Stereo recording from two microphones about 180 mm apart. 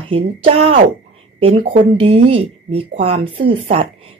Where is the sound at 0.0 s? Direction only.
35° right (ahead or behind).